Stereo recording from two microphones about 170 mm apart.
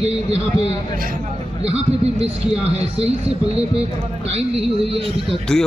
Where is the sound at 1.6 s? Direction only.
35° right (ahead or behind).